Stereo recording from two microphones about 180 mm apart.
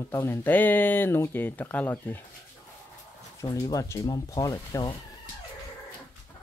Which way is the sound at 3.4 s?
20° left (ahead or behind).